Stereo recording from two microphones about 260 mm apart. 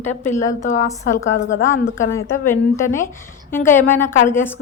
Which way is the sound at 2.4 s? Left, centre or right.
Centre.